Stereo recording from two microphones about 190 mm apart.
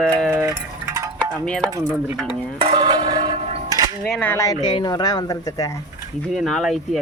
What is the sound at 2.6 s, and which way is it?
Bell, 25° right (ahead or behind).